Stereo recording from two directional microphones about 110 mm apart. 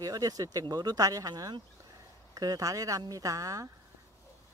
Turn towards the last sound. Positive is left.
turn(degrees=-30)  # may be behind; listen again after turning